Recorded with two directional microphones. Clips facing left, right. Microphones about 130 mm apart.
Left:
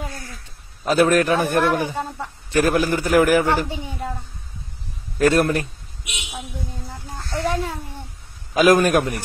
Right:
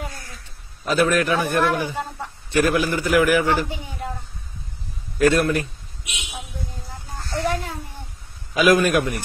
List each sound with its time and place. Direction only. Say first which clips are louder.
0.8 s a man's voice: left 3 dB; 40° left (ahead or behind)
3.6 s a woman's voice: left 2 dB; 20° left (ahead or behind)
5.2 s a man's voice: left 1 dB; 40° left (ahead or behind)
7.4 s a sound: left 2 dB; 20° left (ahead or behind)
8.5 s a man's voice: left 2 dB; 40° left (ahead or behind)